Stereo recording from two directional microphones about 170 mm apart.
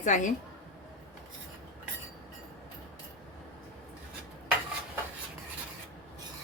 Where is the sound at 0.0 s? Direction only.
45° left (ahead or behind).